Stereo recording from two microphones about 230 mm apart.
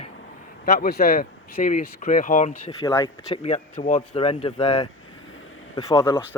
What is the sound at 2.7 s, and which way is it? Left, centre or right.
Speech, centre.